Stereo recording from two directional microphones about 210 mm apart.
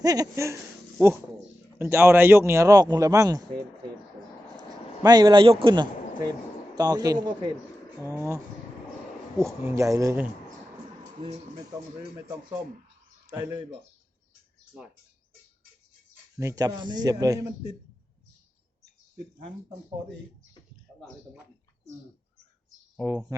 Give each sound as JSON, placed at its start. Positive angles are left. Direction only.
{"t": 0.0, "sound": "speech", "side_deg": -15}
{"t": 1.8, "sound": "speech", "side_deg": -10}
{"t": 5.0, "sound": "a man's voice", "side_deg": -20}
{"t": 9.6, "sound": "speech", "side_deg": -15}
{"t": 13.2, "sound": "speech", "side_deg": -10}
{"t": 16.4, "sound": "speech", "side_deg": -15}
{"t": 23.0, "sound": "speech", "side_deg": -10}